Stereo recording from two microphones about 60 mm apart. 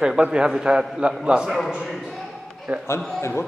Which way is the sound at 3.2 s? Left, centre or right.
Left.